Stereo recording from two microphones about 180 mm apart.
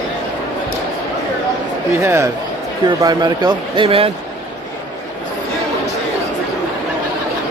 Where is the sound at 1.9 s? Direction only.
15° right (ahead or behind).